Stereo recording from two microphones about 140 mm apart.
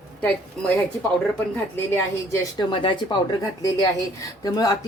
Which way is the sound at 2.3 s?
35° left (ahead or behind).